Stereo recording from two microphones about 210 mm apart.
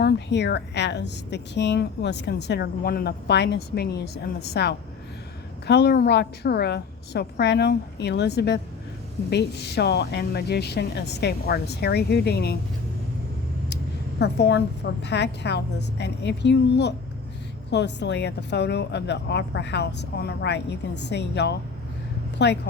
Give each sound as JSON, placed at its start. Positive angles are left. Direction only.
{"t": 0.0, "sound": "speech", "side_deg": 55}
{"t": 14.2, "sound": "speech", "side_deg": 50}